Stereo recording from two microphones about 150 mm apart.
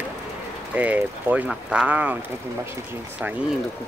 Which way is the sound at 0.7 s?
10° right (ahead or behind).